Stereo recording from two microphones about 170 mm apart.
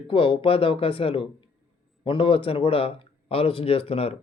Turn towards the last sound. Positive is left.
turn(degrees=35)  # may be behind; listen again after turning